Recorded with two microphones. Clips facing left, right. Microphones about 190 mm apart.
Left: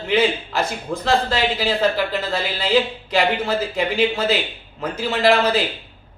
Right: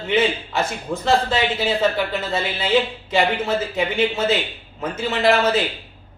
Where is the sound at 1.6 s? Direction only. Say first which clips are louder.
Even; centre (ahead or behind).